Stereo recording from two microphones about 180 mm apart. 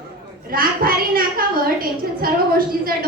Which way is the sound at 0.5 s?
55° right (ahead or behind).